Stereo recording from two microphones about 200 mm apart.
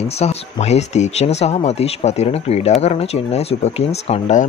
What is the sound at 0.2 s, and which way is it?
Speech, 35° left (ahead or behind).